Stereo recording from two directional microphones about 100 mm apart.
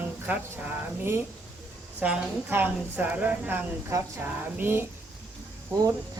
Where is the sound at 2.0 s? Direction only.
15° right (ahead or behind).